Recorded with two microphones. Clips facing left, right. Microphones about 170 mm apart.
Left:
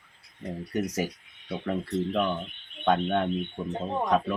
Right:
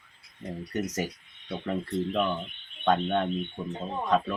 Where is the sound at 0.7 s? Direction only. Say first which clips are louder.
Left 2 dB; 10° left (ahead or behind).